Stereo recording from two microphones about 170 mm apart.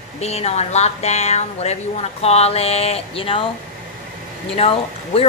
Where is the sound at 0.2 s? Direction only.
40° left (ahead or behind).